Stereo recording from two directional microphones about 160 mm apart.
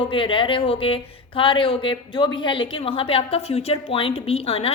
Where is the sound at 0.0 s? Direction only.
30° left (ahead or behind).